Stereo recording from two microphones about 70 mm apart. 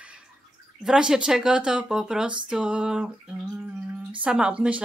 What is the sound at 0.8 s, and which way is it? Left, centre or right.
Speech, centre.